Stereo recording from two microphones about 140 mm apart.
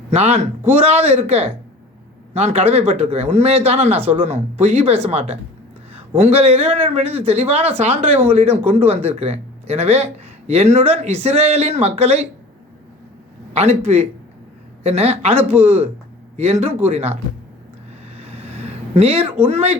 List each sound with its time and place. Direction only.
0.1 s speech: 50° right (ahead or behind)
13.5 s speech: 50° right (ahead or behind)
16.4 s speech: 50° right (ahead or behind)
18.2 s a sound: 45° right (ahead or behind)